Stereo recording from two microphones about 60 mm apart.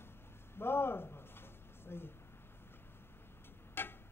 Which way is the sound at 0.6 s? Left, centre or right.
Left.